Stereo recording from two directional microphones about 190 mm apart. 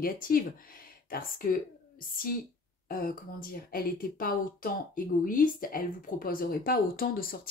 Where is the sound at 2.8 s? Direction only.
50° left (ahead or behind).